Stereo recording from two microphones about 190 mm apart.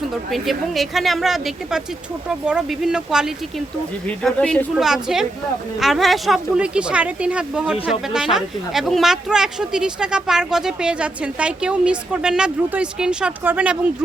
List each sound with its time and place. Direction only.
0.3 s speech: centre (ahead or behind)